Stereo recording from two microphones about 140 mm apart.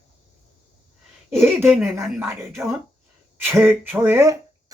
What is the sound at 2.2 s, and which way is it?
A woman's voice, 15° right (ahead or behind).